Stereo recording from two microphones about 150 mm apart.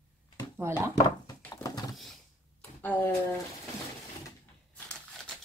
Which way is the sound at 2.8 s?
10° left (ahead or behind).